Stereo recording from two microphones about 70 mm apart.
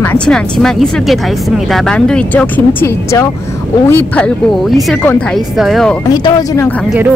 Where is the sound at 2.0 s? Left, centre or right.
Centre.